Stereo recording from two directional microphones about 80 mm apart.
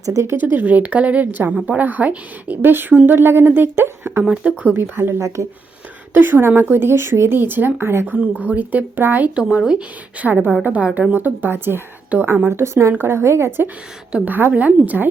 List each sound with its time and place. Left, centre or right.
0.0 s a woman's voice: right
0.3 s speech: right
4.3 s speech: centre
4.7 s a woman's voice: right
14.1 s speech: right